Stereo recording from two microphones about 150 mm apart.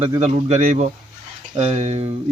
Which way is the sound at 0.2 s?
45° right (ahead or behind).